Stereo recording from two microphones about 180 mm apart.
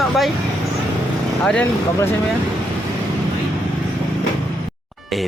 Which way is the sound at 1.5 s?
5° left (ahead or behind).